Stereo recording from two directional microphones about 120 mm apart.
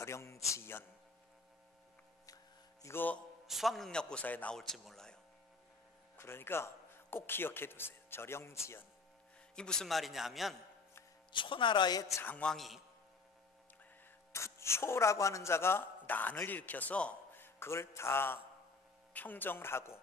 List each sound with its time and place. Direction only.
0.0 s a man's voice: 25° left (ahead or behind)
2.2 s hum: 30° left (ahead or behind)
3.0 s speech: 15° left (ahead or behind)
3.4 s a man's voice: centre (ahead or behind)
6.1 s a man's voice: 20° left (ahead or behind)
9.6 s a man's voice: 5° left (ahead or behind)
11.3 s a man's voice: 45° left (ahead or behind)
12.2 s speech: 15° left (ahead or behind)
14.3 s speech: 25° left (ahead or behind)